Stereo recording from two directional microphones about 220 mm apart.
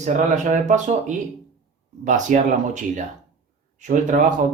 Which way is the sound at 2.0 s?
35° right (ahead or behind).